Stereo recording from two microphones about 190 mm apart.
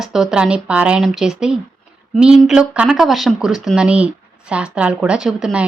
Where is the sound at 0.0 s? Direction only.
5° right (ahead or behind).